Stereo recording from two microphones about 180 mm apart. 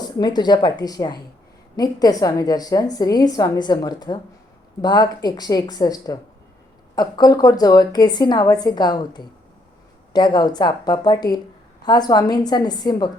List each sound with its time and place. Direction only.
0.0 s a woman's voice: 25° left (ahead or behind)